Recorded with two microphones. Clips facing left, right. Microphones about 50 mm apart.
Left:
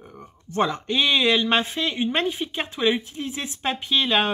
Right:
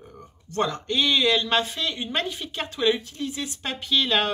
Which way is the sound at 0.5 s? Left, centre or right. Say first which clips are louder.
Left 2 dB; left.